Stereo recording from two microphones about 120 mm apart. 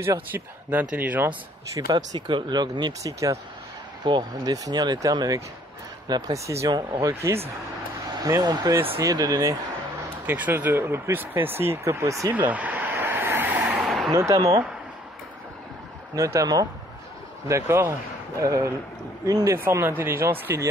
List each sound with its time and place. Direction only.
0.0 s speech: 20° right (ahead or behind)
1.7 s speech: 35° right (ahead or behind)
10.2 s speech: 15° right (ahead or behind)
12.3 s vehicle: 15° right (ahead or behind)
13.8 s a sound: centre (ahead or behind)
14.1 s speech: 25° right (ahead or behind)
16.2 s speech: 25° right (ahead or behind)